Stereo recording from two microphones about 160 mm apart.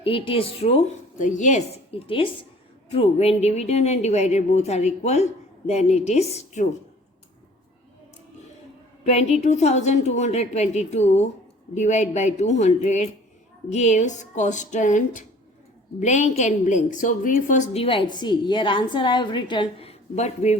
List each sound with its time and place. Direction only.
0.0 s a woman's voice: 35° left (ahead or behind)
1.2 s a woman's voice: 50° left (ahead or behind)
9.0 s a woman's voice: 45° left (ahead or behind)
17.8 s a woman's voice: 30° left (ahead or behind)